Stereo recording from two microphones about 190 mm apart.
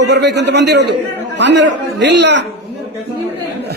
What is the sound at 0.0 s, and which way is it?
A man's voice, 65° right (ahead or behind).